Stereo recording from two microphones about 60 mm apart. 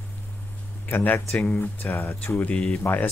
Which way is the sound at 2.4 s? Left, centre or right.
Centre.